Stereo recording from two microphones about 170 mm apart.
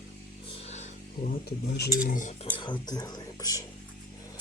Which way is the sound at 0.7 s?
40° left (ahead or behind).